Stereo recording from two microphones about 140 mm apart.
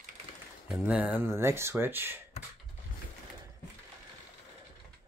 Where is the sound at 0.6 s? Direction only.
5° right (ahead or behind).